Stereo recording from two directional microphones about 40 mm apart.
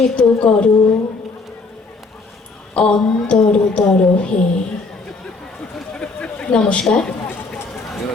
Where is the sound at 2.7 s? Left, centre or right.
Left.